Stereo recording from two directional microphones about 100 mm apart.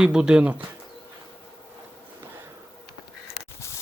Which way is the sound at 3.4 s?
30° left (ahead or behind).